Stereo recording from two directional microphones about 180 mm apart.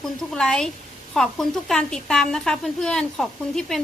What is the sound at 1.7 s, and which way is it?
Speech, 5° left (ahead or behind).